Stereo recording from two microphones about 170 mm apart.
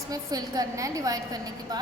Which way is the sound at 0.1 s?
20° right (ahead or behind).